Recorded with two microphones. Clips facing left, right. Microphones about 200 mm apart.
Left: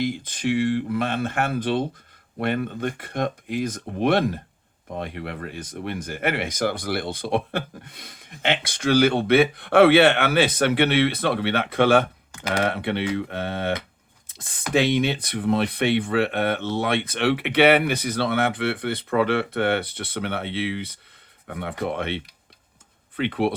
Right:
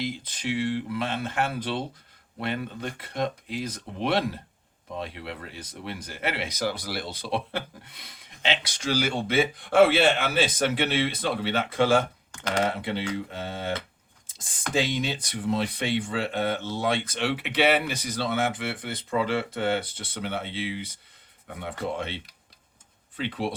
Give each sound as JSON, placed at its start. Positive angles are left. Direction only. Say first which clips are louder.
{"t": 0.0, "sound": "speech", "louder": "left 6 dB", "side_deg": 50}
{"t": 14.3, "sound": "a sound", "louder": "left 4 dB", "side_deg": 60}
{"t": 14.7, "sound": "speech", "louder": "left 6 dB", "side_deg": 65}